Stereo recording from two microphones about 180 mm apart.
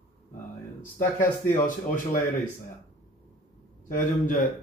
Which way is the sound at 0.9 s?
45° left (ahead or behind).